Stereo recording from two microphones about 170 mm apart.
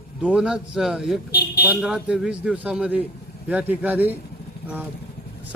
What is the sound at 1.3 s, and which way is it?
Speech, 65° left (ahead or behind).